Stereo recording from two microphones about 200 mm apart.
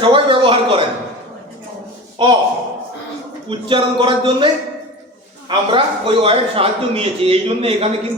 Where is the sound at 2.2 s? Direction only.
20° right (ahead or behind).